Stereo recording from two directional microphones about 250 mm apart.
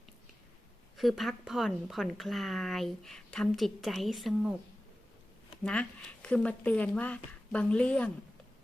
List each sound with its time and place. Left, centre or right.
0.9 s speech: centre
5.6 s speech: centre